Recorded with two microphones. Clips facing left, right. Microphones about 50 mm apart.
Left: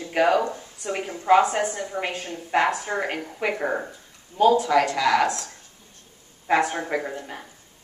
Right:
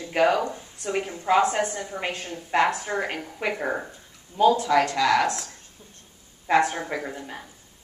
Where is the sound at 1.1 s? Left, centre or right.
Centre.